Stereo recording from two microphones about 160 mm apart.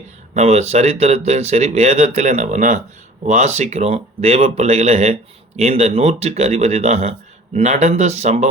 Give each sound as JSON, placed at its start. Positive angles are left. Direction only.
{"t": 0.3, "sound": "speech", "side_deg": -45}